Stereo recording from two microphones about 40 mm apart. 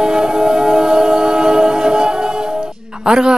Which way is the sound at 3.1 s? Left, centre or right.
Centre.